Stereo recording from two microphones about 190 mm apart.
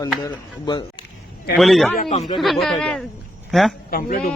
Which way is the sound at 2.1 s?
35° left (ahead or behind).